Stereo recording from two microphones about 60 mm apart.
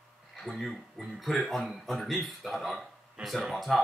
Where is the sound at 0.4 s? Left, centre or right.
Centre.